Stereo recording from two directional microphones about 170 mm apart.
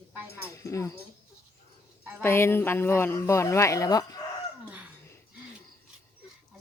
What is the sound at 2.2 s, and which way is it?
A woman's voice, 15° left (ahead or behind).